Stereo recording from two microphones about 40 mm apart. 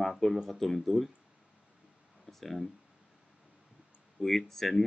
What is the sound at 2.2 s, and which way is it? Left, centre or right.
Speech, centre.